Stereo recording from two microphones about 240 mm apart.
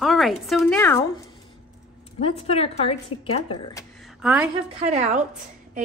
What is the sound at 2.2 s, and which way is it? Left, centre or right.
Speech, left.